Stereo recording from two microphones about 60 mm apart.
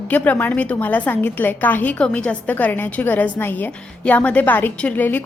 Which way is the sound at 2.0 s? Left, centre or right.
Centre.